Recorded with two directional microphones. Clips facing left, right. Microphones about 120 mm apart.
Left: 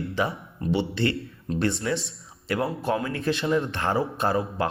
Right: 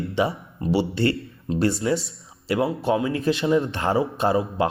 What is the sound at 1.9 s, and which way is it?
Speech, 20° right (ahead or behind).